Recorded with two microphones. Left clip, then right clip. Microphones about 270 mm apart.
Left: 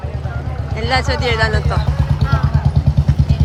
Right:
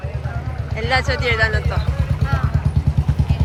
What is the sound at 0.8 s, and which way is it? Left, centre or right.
Speech, centre.